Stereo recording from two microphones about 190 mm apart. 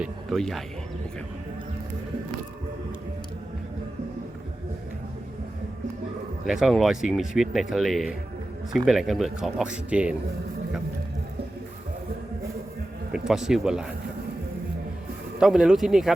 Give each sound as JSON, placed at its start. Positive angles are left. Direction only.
{"t": 0.0, "sound": "speech", "side_deg": 0}
{"t": 6.4, "sound": "speech", "side_deg": 0}
{"t": 13.1, "sound": "speech", "side_deg": -5}
{"t": 15.4, "sound": "speech", "side_deg": -5}